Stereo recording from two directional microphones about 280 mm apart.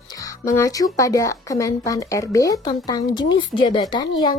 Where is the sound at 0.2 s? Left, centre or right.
Centre.